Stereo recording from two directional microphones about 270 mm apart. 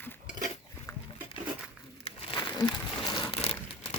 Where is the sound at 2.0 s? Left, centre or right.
Centre.